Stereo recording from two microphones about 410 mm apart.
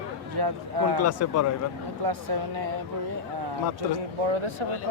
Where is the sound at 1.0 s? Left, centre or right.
Left.